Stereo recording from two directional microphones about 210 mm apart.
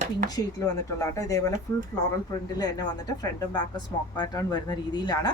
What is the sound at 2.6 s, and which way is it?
Speech, 20° left (ahead or behind).